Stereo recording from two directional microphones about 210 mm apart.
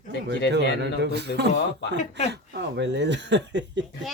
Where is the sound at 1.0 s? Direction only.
55° right (ahead or behind).